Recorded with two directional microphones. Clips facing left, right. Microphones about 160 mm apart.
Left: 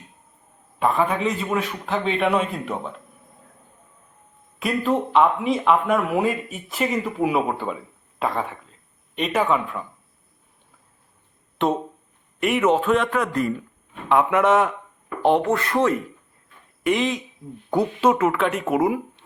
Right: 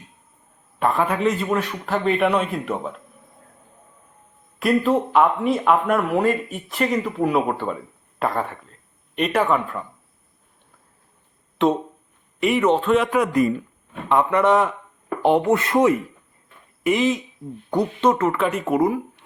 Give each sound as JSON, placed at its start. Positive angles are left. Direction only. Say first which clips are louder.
{"t": 0.8, "sound": "speech", "louder": "right 1 dB", "side_deg": 0}
{"t": 4.6, "sound": "speech", "louder": "right 3 dB", "side_deg": 0}
{"t": 11.5, "sound": "speech", "louder": "right 3 dB", "side_deg": 0}
{"t": 13.1, "sound": "speech", "louder": "right 4 dB", "side_deg": -10}
{"t": 14.1, "sound": "speech", "louder": "even", "side_deg": 5}
{"t": 15.4, "sound": "speech", "louder": "right 3 dB", "side_deg": -20}
{"t": 16.8, "sound": "speech", "louder": "right 2 dB", "side_deg": 0}